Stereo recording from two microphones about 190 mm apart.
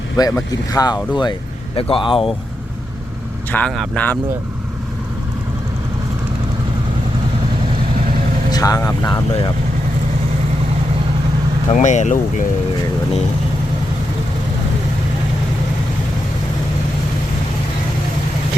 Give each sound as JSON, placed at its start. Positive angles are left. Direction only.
{"t": 0.2, "sound": "speech", "side_deg": 20}
{"t": 3.5, "sound": "speech", "side_deg": 5}
{"t": 8.4, "sound": "speech", "side_deg": 20}
{"t": 11.7, "sound": "speech", "side_deg": 40}